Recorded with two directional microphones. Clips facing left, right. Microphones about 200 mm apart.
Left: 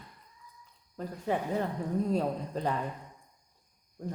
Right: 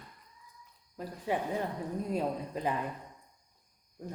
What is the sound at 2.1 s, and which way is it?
Speech, 10° right (ahead or behind).